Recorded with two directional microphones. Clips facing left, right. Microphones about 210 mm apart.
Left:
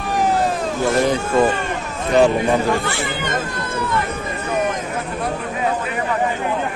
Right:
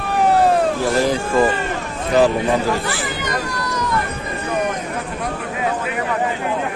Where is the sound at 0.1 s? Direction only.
60° right (ahead or behind).